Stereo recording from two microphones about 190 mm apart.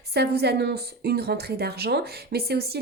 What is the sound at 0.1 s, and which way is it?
A woman's voice, 60° right (ahead or behind).